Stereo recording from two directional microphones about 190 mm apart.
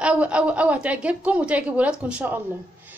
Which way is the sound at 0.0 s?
5° right (ahead or behind).